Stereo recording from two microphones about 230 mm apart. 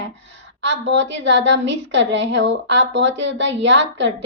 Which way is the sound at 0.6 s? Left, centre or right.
Right.